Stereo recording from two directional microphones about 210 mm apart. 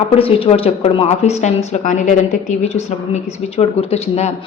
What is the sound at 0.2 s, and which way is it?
A woman's voice, 25° left (ahead or behind).